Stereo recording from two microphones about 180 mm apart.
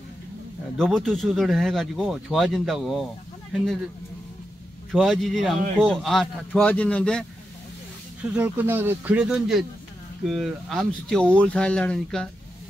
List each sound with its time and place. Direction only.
0.7 s speech: centre (ahead or behind)
4.9 s speech: centre (ahead or behind)
8.2 s speech: 10° right (ahead or behind)